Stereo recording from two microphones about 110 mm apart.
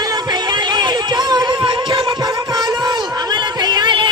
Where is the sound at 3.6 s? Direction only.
40° right (ahead or behind).